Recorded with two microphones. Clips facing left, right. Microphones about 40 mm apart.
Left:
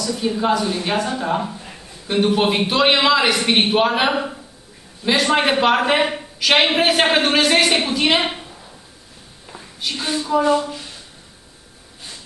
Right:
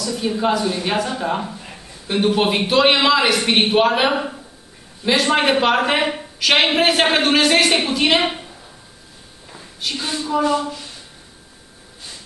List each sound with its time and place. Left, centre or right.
0.0 s speech: centre
9.5 s a sound: centre
10.2 s speech: centre